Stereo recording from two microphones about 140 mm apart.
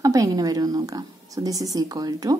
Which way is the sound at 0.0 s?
25° right (ahead or behind).